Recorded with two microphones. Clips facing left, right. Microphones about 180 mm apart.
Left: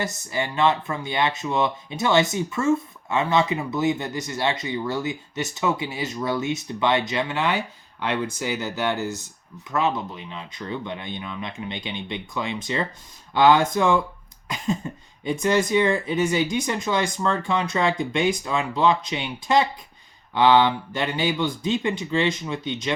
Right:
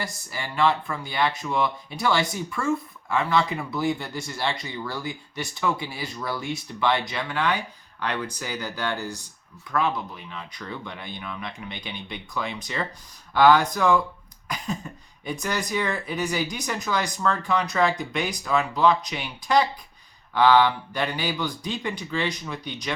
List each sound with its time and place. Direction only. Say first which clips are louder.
0.0 s speech: left 6 dB; 20° left (ahead or behind)
15.2 s speech: left 8 dB; 25° left (ahead or behind)